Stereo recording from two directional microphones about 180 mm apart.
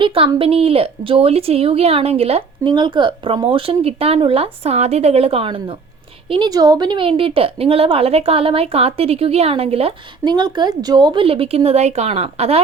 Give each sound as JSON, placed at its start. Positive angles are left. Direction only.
{"t": 0.0, "sound": "a woman's voice", "side_deg": -30}